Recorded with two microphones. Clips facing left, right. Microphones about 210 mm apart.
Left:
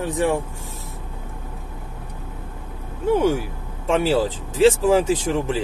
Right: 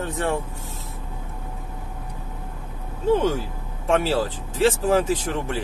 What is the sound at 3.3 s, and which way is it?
Speech, 15° left (ahead or behind).